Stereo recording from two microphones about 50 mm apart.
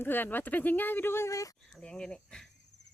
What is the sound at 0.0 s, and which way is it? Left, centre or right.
Speech, left.